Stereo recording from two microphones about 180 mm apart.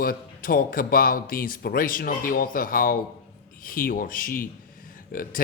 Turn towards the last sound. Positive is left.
turn(degrees=50)  # may be behind; listen again after turning